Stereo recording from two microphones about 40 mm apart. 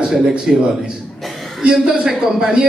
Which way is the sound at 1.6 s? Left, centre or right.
Right.